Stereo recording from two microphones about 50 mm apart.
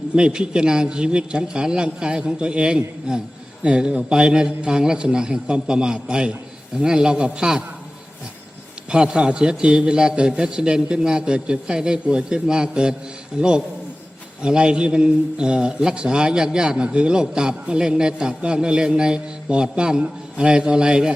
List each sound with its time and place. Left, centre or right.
0.2 s a man's voice: centre
8.9 s a man's voice: centre